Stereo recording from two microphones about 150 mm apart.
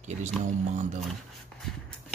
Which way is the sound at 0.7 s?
55° right (ahead or behind).